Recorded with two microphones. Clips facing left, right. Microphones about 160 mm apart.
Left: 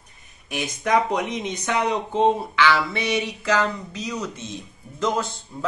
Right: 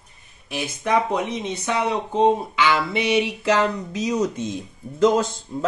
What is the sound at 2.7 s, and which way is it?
Speech, 20° right (ahead or behind).